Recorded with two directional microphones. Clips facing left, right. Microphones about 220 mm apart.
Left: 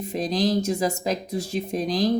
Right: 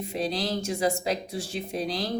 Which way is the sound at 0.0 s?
40° left (ahead or behind).